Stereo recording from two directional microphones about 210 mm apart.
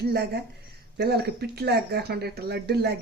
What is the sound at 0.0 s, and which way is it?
Speech, 50° right (ahead or behind).